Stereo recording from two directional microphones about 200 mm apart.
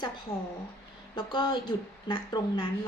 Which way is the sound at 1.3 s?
20° left (ahead or behind).